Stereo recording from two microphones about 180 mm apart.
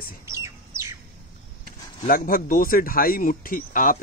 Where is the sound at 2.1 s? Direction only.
55° left (ahead or behind).